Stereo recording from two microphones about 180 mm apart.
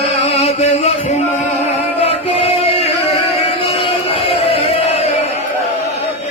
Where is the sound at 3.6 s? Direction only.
30° left (ahead or behind).